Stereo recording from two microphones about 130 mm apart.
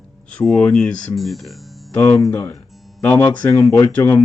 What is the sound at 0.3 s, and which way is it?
Speech, 5° left (ahead or behind).